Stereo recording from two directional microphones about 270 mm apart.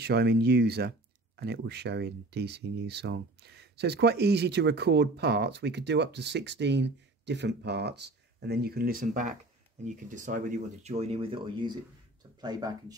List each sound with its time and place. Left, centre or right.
0.0 s speech: right; by 12.9 s centre